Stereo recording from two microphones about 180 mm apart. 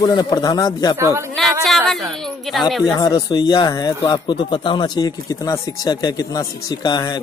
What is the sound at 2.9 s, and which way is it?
Speech, 20° left (ahead or behind).